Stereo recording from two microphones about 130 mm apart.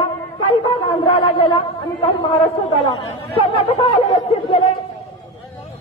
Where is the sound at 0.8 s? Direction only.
40° left (ahead or behind).